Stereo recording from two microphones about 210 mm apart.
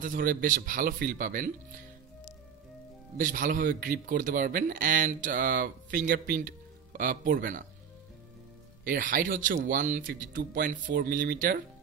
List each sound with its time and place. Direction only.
0.0 s a man's voice: 40° right (ahead or behind)
3.2 s a man's voice: 40° right (ahead or behind)
8.8 s a man's voice: 40° right (ahead or behind)